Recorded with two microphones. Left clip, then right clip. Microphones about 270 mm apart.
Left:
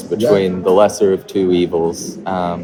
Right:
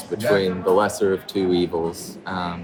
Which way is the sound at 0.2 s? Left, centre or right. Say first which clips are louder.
Left 6 dB; centre.